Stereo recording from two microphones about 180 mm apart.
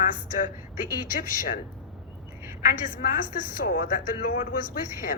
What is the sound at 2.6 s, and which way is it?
A woman's voice, 50° left (ahead or behind).